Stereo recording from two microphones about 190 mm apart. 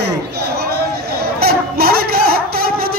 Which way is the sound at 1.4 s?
55° right (ahead or behind).